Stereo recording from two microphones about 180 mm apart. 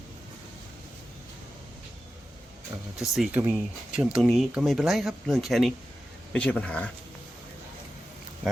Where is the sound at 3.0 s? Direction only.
Centre (ahead or behind).